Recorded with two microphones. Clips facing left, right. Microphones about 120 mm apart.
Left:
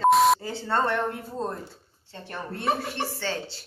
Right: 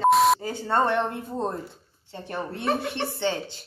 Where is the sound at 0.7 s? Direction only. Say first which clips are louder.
Right 2 dB; 15° right (ahead or behind).